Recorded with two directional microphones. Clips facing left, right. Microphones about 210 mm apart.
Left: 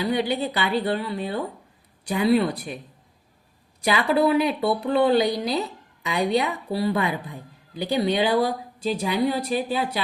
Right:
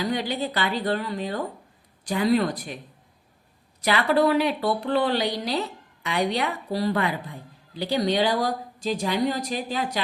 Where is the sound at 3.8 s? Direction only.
10° left (ahead or behind).